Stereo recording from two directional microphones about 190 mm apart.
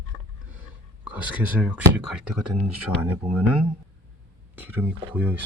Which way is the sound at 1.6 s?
10° right (ahead or behind).